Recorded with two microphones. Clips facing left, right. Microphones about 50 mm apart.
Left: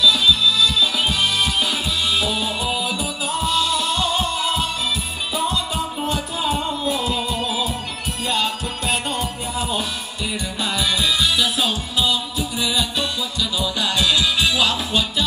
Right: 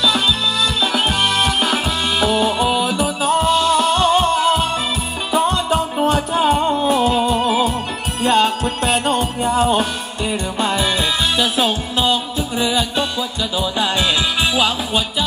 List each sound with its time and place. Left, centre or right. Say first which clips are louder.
0.0 s music: left 1 dB; right; by 15.2 s centre